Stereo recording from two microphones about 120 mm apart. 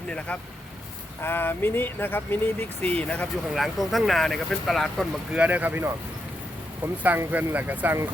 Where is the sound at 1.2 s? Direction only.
20° left (ahead or behind).